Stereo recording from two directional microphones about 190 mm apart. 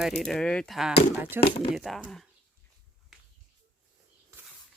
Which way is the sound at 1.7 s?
Centre (ahead or behind).